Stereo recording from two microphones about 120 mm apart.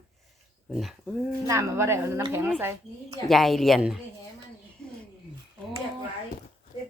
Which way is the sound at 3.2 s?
Centre (ahead or behind).